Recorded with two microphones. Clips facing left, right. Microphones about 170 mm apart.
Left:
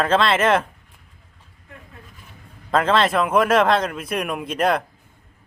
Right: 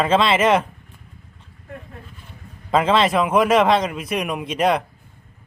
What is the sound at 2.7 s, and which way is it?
A man's voice, 5° right (ahead or behind).